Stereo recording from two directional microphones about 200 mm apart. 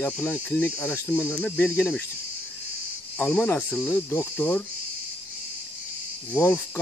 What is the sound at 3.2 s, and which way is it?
Cricket, 5° left (ahead or behind).